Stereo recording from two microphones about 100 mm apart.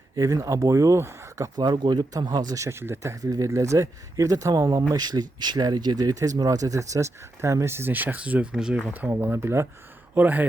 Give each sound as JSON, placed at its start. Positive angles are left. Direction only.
{"t": 0.2, "sound": "speech", "side_deg": -35}
{"t": 1.5, "sound": "speech", "side_deg": -45}
{"t": 8.9, "sound": "speech", "side_deg": -20}